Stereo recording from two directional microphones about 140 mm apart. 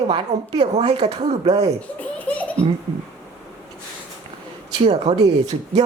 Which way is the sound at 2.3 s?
10° left (ahead or behind).